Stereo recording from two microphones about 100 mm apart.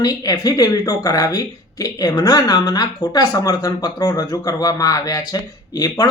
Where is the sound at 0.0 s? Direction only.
40° left (ahead or behind).